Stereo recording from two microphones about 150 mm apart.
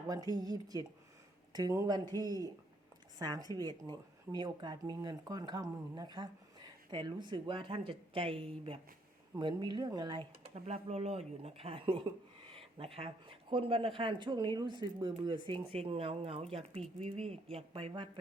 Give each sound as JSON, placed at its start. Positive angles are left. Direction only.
{"t": 0.1, "sound": "speech", "side_deg": -25}
{"t": 10.5, "sound": "speech", "side_deg": -45}